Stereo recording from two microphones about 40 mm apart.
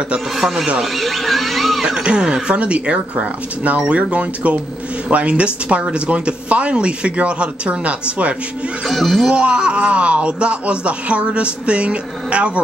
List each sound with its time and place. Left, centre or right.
0.9 s a sound: centre
1.9 s speech: right
8.8 s speech: centre
9.3 s speech: right